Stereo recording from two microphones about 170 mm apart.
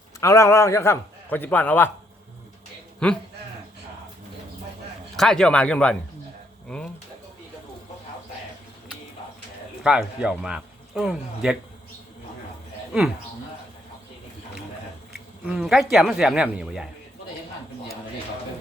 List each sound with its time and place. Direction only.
0.2 s a man's voice: 15° left (ahead or behind)
3.0 s speech: 5° left (ahead or behind)
5.1 s speech: 5° left (ahead or behind)
9.8 s speech: 5° right (ahead or behind)
15.4 s speech: 5° right (ahead or behind)